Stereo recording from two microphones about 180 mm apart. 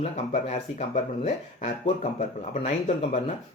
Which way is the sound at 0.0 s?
35° left (ahead or behind).